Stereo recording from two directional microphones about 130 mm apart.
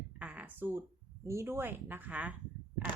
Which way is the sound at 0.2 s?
10° right (ahead or behind).